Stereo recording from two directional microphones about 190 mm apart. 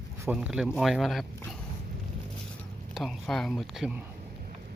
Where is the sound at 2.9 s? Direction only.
Centre (ahead or behind).